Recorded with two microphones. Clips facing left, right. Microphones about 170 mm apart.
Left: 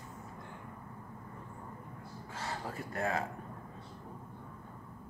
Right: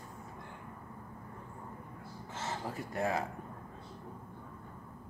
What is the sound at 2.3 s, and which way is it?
Speech, 20° right (ahead or behind).